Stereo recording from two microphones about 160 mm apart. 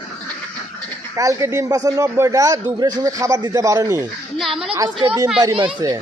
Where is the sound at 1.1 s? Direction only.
20° right (ahead or behind).